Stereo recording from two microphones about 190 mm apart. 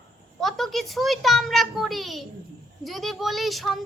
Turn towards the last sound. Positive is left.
turn(degrees=0)  # may be behind; listen again after turning